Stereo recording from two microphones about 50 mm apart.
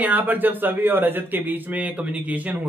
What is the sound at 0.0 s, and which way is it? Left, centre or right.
Speech, right.